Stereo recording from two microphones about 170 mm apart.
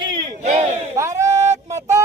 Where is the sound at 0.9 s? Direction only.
20° right (ahead or behind).